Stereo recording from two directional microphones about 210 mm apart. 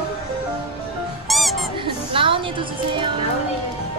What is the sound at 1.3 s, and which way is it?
Music, centre (ahead or behind).